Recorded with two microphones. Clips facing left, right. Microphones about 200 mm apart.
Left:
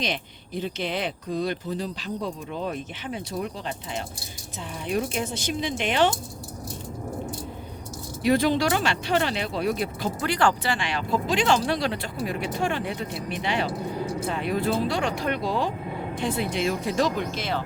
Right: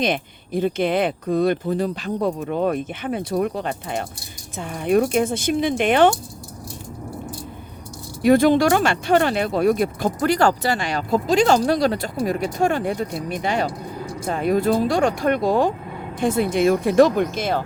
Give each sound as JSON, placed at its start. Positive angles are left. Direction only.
{"t": 0.0, "sound": "speech", "side_deg": -55}
{"t": 8.2, "sound": "speech", "side_deg": -50}